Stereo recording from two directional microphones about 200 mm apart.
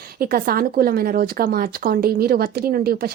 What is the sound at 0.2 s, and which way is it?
Speech, 50° right (ahead or behind).